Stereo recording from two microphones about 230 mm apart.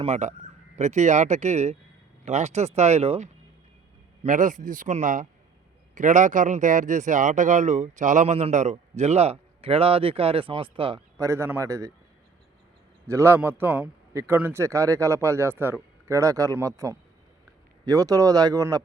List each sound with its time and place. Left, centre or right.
0.0 s speech: right; by 11.9 s centre
13.1 s a man's voice: centre